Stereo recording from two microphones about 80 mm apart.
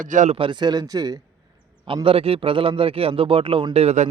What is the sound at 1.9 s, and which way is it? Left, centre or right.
Speech, right.